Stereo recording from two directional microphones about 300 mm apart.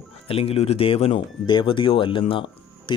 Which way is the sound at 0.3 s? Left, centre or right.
Centre.